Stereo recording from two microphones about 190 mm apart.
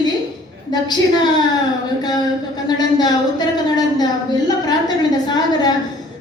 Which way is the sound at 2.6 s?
20° left (ahead or behind).